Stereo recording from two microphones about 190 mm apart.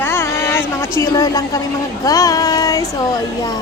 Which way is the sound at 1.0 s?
20° left (ahead or behind).